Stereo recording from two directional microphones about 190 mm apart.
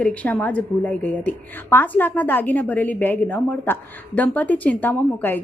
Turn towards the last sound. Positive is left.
turn(degrees=10)  # may be behind; listen again after turning